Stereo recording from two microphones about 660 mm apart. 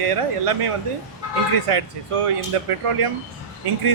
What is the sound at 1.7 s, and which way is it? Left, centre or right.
Speech, right.